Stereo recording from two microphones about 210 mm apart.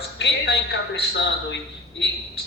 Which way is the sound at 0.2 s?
55° left (ahead or behind).